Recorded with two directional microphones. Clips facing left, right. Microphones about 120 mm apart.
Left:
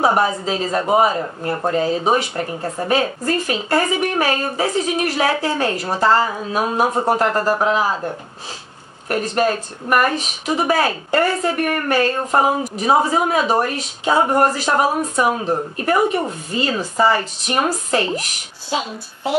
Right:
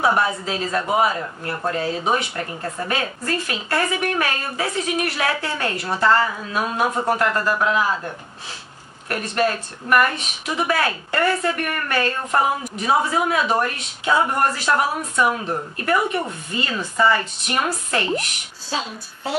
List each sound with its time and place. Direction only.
0.0 s a woman's voice: 35° left (ahead or behind)
2.1 s speech: 35° left (ahead or behind)
9.1 s speech: 40° left (ahead or behind)
18.7 s a woman's voice: 15° left (ahead or behind)